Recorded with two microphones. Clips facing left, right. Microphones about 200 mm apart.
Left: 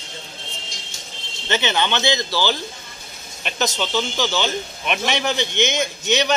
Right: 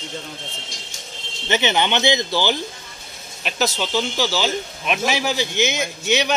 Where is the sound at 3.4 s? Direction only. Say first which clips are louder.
Right 1 dB; 5° right (ahead or behind).